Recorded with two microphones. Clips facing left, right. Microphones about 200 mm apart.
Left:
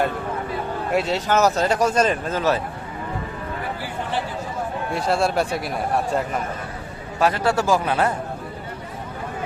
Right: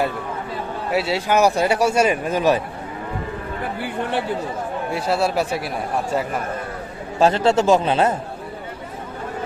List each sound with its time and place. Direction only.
0.9 s speech: 5° right (ahead or behind)
3.8 s speech: 60° right (ahead or behind)
4.9 s speech: 5° right (ahead or behind)
7.2 s speech: 25° right (ahead or behind)